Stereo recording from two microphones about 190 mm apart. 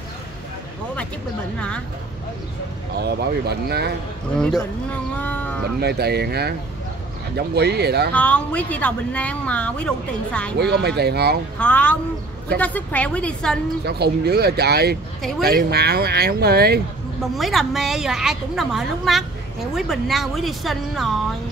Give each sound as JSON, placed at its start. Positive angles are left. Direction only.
{"t": 3.0, "sound": "speech", "side_deg": -60}
{"t": 4.4, "sound": "a woman's voice", "side_deg": 5}
{"t": 5.8, "sound": "speech", "side_deg": -60}
{"t": 8.1, "sound": "speech", "side_deg": 5}
{"t": 10.6, "sound": "speech", "side_deg": -60}
{"t": 11.5, "sound": "speech", "side_deg": 5}
{"t": 13.8, "sound": "speech", "side_deg": -60}
{"t": 17.2, "sound": "a woman's voice", "side_deg": 0}